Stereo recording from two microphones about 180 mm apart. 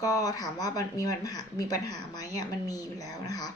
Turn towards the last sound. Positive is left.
turn(degrees=20)  # may be behind; listen again after turning